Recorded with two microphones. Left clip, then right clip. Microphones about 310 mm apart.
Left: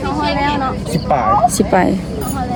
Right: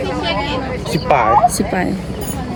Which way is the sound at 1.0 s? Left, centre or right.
Right.